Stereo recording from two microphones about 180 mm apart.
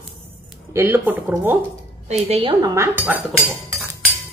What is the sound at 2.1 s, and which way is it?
Speech, 35° right (ahead or behind).